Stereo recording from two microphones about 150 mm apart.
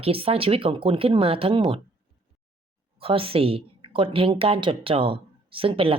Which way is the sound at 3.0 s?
40° right (ahead or behind).